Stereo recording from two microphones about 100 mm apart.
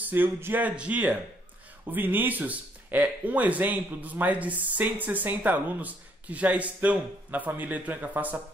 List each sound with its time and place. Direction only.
0.0 s speech: 20° right (ahead or behind)